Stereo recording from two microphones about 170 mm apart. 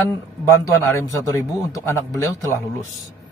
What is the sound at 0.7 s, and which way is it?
A man's voice, 15° left (ahead or behind).